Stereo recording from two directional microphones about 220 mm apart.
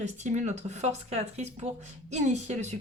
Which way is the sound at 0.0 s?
30° right (ahead or behind).